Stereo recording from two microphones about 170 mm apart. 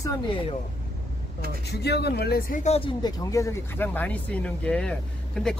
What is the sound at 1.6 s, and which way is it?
Speech, 75° left (ahead or behind).